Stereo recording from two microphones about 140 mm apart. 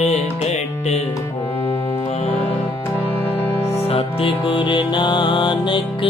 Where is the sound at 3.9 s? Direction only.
40° left (ahead or behind).